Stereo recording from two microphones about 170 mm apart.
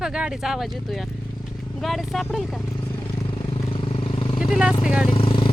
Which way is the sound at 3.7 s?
30° left (ahead or behind).